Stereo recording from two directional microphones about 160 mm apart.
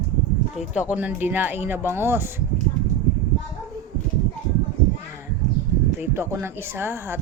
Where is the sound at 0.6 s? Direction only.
5° right (ahead or behind).